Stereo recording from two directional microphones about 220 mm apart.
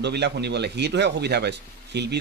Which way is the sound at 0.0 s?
50° right (ahead or behind).